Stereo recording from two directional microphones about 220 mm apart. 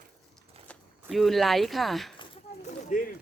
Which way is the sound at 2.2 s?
35° left (ahead or behind).